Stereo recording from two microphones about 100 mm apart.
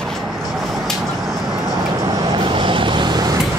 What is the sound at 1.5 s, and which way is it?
Vehicle, 50° right (ahead or behind).